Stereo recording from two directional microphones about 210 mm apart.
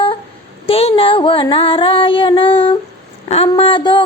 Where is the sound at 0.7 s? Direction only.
25° left (ahead or behind).